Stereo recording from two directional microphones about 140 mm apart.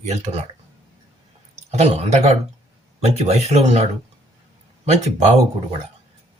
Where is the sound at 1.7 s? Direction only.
50° right (ahead or behind).